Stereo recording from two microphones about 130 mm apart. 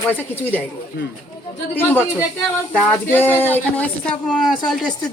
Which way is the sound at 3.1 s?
15° left (ahead or behind).